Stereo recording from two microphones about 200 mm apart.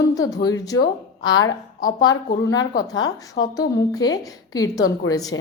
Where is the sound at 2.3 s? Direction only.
20° left (ahead or behind).